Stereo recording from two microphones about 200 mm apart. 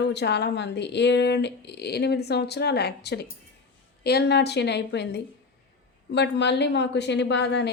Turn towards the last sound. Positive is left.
turn(degrees=60)  # may be behind; listen again after turning